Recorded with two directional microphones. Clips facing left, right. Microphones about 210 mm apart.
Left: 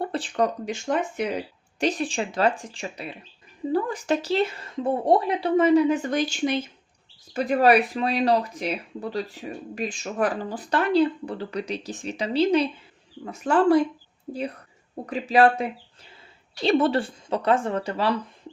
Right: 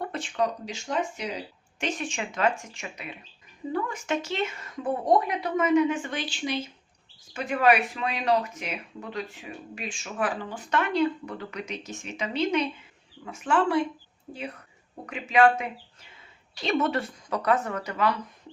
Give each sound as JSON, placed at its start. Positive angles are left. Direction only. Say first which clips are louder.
{"t": 0.0, "sound": "a sound", "louder": "left 4 dB", "side_deg": 35}
{"t": 0.6, "sound": "speech", "louder": "left 4 dB", "side_deg": 55}
{"t": 1.8, "sound": "speech", "louder": "left 6 dB", "side_deg": 35}
{"t": 7.3, "sound": "speech", "louder": "left 4 dB", "side_deg": 35}
{"t": 16.6, "sound": "speech", "louder": "left 5 dB", "side_deg": 30}